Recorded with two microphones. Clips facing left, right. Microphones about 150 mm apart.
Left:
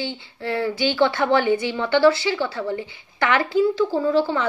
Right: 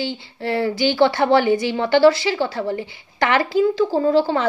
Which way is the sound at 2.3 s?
40° right (ahead or behind).